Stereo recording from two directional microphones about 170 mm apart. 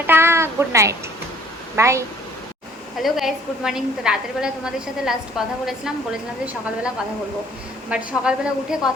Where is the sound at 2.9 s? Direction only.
Centre (ahead or behind).